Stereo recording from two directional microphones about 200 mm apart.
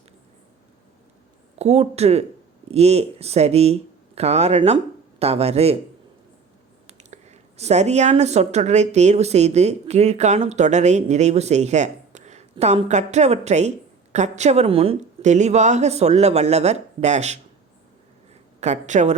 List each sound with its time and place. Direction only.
1.5 s speech: 35° right (ahead or behind)
6.8 s speech: 35° right (ahead or behind)
18.6 s speech: 35° right (ahead or behind)